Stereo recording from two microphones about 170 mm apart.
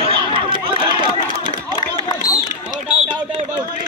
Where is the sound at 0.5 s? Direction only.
30° right (ahead or behind).